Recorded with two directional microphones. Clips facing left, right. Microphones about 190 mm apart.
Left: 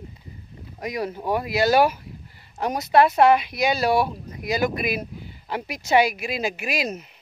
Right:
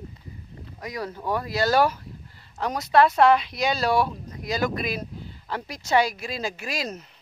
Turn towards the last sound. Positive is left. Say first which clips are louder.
# left 4 dB
turn(degrees=15)  # may be behind; listen again after turning